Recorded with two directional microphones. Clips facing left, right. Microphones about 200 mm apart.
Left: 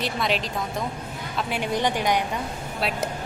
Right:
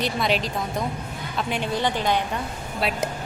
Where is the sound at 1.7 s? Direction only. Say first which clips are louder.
Left 1 dB; 15° left (ahead or behind).